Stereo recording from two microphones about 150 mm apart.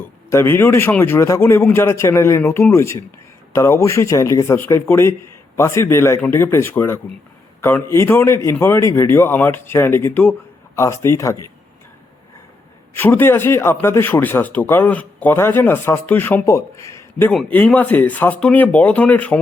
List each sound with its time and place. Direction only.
0.0 s speech: 15° left (ahead or behind)
12.9 s speech: 15° left (ahead or behind)